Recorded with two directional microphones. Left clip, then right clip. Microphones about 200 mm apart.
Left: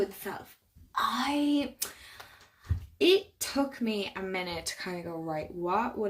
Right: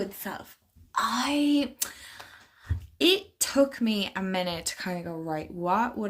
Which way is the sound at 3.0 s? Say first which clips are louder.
Right 1 dB; 50° right (ahead or behind).